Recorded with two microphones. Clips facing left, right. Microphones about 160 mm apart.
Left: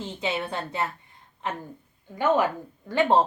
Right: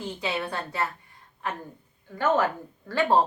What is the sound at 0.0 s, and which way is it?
Speech, 20° left (ahead or behind).